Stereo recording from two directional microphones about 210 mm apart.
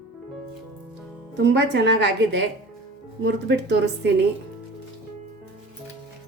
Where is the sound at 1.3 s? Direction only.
55° right (ahead or behind).